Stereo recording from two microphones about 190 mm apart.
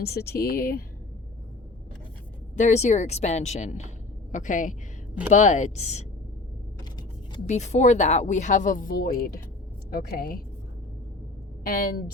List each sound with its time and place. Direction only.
0.0 s speech: 55° left (ahead or behind)
2.6 s a woman's voice: 40° left (ahead or behind)
7.4 s a woman's voice: 40° left (ahead or behind)
11.6 s speech: 50° left (ahead or behind)